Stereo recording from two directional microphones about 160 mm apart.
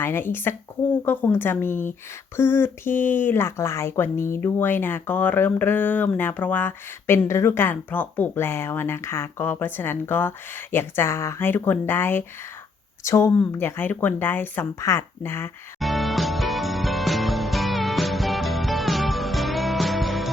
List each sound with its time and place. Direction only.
0.0 s speech: 15° left (ahead or behind)
15.8 s music: centre (ahead or behind)